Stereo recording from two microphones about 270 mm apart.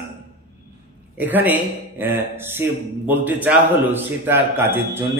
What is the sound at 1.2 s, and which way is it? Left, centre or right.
A man's voice, centre.